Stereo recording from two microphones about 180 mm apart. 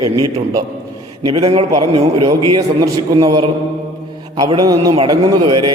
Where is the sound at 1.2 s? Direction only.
25° right (ahead or behind).